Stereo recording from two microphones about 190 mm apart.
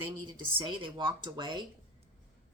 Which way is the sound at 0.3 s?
25° right (ahead or behind).